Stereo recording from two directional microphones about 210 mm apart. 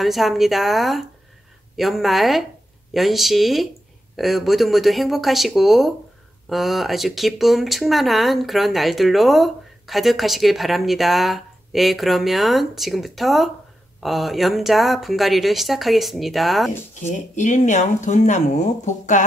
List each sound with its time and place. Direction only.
0.0 s speech: centre (ahead or behind)
17.0 s speech: 35° left (ahead or behind)